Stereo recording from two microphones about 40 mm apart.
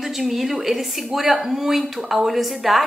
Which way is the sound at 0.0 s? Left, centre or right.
Centre.